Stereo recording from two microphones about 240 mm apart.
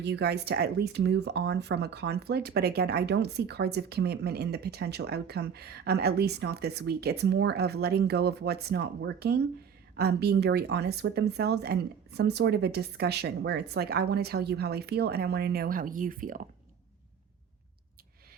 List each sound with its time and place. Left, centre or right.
0.0 s speech: right